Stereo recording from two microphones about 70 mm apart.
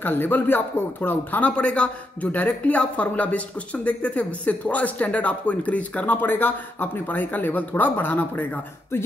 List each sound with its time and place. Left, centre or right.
0.0 s speech: left
1.5 s a man's voice: centre
8.9 s speech: left